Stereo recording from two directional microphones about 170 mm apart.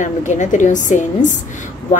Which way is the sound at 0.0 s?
45° left (ahead or behind).